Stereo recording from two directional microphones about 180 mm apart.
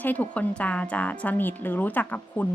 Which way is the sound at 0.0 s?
10° left (ahead or behind).